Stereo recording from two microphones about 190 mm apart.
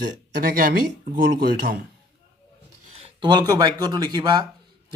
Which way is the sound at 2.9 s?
25° right (ahead or behind).